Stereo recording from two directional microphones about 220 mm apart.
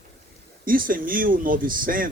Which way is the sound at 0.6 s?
40° right (ahead or behind).